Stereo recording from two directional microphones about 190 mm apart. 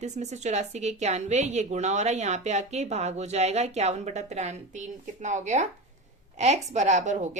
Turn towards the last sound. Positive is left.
turn(degrees=-40)  # may be behind; listen again after turning